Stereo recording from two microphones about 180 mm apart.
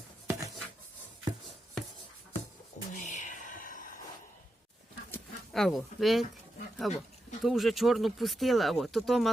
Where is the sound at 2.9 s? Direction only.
45° left (ahead or behind).